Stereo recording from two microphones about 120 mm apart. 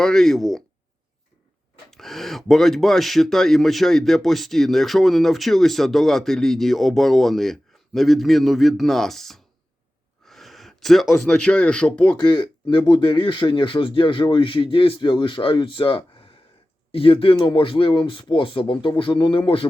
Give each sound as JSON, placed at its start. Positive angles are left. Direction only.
{"t": 0.0, "sound": "speech", "side_deg": 5}
{"t": 1.9, "sound": "speech", "side_deg": 0}
{"t": 12.1, "sound": "speech", "side_deg": 40}